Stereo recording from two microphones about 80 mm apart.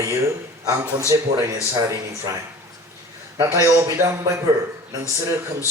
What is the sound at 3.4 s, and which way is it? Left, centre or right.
Speech, right.